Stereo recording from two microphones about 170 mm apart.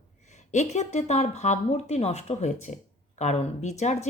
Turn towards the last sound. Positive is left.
turn(degrees=40)  # may be behind; listen again after turning